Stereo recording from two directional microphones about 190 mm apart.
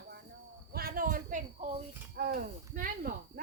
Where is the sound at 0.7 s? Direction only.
50° right (ahead or behind).